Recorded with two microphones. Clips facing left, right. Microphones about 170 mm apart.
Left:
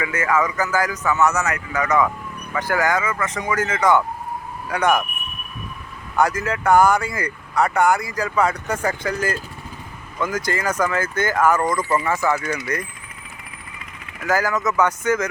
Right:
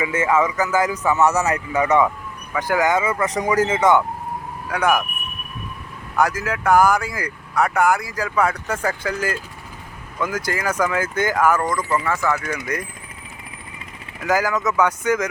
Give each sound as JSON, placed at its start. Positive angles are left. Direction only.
{"t": 0.0, "sound": "speech", "side_deg": -25}
{"t": 2.5, "sound": "speech", "side_deg": -15}
{"t": 4.7, "sound": "speech", "side_deg": -5}
{"t": 6.1, "sound": "speech", "side_deg": -5}
{"t": 12.7, "sound": "speech", "side_deg": -10}
{"t": 14.3, "sound": "speech", "side_deg": -15}